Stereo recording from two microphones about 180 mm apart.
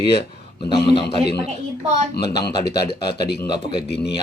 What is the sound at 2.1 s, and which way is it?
Speech, 65° left (ahead or behind).